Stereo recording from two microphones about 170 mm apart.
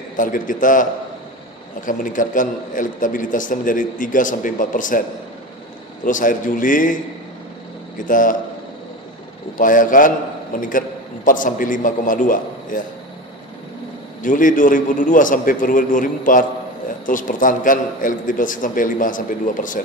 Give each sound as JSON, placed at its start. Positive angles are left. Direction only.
{"t": 0.2, "sound": "a man's voice", "side_deg": 50}
{"t": 1.9, "sound": "a man's voice", "side_deg": 50}
{"t": 6.0, "sound": "a man's voice", "side_deg": 50}
{"t": 8.0, "sound": "a man's voice", "side_deg": 50}
{"t": 9.6, "sound": "a man's voice", "side_deg": 50}
{"t": 14.2, "sound": "a man's voice", "side_deg": 50}